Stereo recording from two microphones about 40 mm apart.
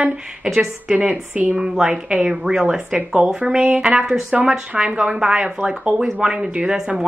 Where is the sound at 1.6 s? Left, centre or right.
Centre.